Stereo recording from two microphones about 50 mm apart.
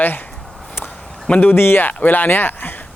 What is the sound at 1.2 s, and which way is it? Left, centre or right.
Speech, left.